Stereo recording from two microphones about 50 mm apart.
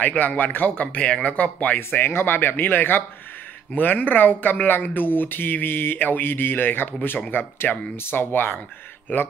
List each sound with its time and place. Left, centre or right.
0.0 s speech: left
1.8 s speech: left